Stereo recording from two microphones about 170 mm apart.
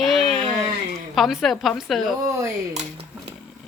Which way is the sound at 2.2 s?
15° right (ahead or behind).